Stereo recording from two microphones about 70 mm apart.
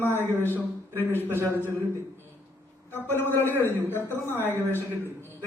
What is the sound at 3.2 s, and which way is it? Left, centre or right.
Speech, left.